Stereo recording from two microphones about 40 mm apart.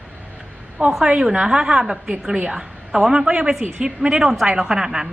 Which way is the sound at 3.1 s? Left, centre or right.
Right.